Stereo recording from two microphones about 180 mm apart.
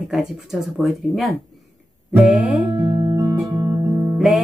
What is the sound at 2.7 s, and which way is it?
Music, 25° right (ahead or behind).